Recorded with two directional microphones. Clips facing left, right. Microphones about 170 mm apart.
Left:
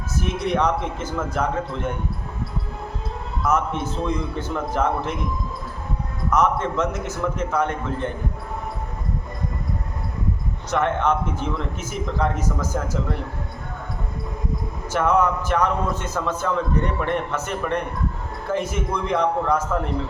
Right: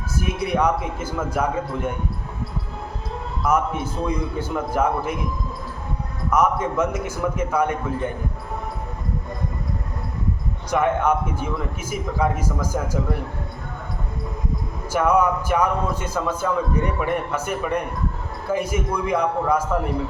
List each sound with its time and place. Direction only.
0.2 s a man's voice: 10° right (ahead or behind)
3.4 s a man's voice: 10° right (ahead or behind)
6.3 s a man's voice: 10° right (ahead or behind)
10.7 s a man's voice: 10° right (ahead or behind)
14.9 s a man's voice: 10° right (ahead or behind)